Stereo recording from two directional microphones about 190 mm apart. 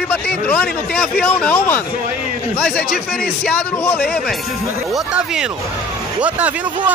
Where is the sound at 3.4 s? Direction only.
10° left (ahead or behind).